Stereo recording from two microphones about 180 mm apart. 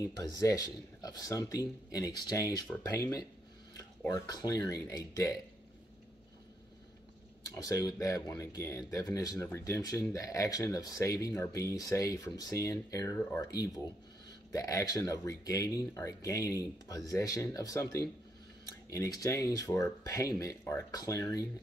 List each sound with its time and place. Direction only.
0.0 s speech: 20° left (ahead or behind)
7.5 s speech: 20° left (ahead or behind)